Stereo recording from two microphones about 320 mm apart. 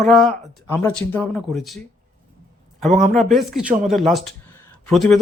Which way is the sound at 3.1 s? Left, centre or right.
Centre.